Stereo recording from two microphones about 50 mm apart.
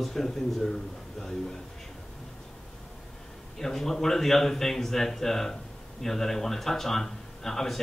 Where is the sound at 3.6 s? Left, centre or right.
Centre.